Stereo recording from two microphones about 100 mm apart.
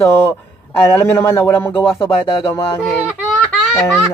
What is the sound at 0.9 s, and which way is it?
Speech, 25° left (ahead or behind).